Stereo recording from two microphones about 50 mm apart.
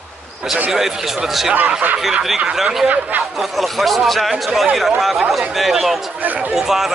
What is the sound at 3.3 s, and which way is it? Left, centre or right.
Speech, centre.